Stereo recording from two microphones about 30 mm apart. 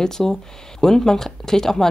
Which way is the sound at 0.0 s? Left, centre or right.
Centre.